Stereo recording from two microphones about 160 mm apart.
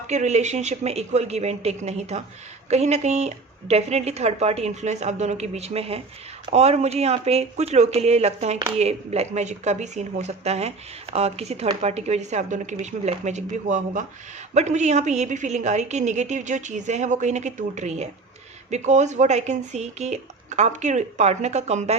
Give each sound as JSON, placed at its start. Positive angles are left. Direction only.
{"t": 0.1, "sound": "a woman's voice", "side_deg": -45}